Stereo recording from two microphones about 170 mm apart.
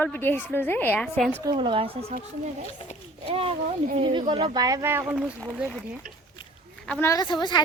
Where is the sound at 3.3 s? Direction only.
35° right (ahead or behind); by 5.0 s 15° right (ahead or behind).